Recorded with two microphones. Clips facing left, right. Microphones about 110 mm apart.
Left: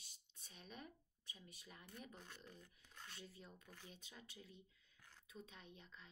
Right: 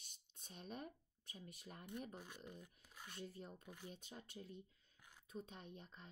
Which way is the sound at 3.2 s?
45° right (ahead or behind).